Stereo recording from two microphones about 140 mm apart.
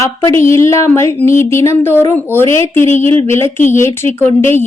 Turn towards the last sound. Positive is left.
turn(degrees=15)  # may be behind; listen again after turning